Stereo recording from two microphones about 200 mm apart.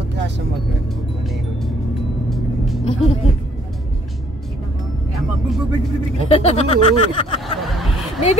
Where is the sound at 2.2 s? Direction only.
Centre (ahead or behind).